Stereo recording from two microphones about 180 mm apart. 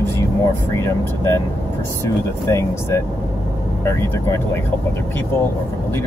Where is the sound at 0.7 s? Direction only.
15° left (ahead or behind).